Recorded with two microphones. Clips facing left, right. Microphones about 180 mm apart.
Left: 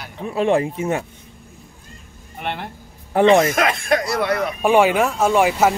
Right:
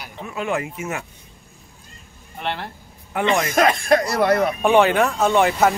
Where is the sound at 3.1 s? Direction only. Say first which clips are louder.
Left 7 dB; 35° left (ahead or behind).